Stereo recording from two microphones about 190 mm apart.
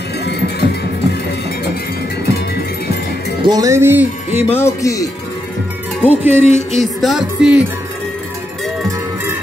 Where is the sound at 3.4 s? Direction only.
20° right (ahead or behind).